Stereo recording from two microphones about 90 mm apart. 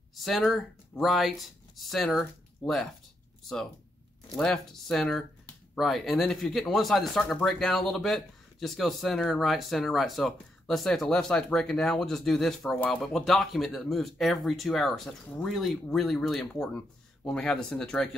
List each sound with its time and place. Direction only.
0.1 s speech: centre (ahead or behind)
4.4 s speech: 5° left (ahead or behind)